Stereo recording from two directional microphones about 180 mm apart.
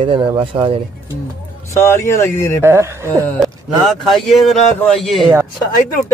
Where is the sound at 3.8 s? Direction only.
Centre (ahead or behind).